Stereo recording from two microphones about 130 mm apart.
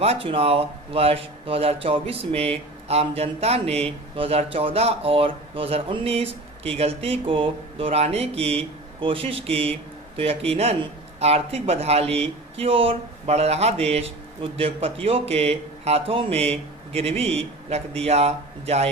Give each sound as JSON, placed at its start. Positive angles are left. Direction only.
{"t": 0.0, "sound": "a man's voice", "side_deg": -50}